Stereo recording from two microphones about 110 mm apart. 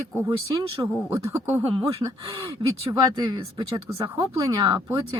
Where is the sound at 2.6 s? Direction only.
50° right (ahead or behind).